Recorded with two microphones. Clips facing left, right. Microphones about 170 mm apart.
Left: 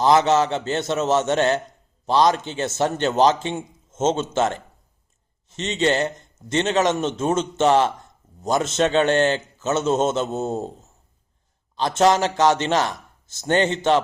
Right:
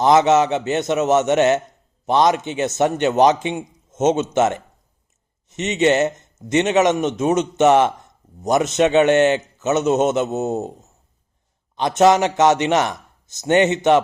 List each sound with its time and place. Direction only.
0.0 s speech: 20° right (ahead or behind)
10.3 s a man's voice: 5° right (ahead or behind)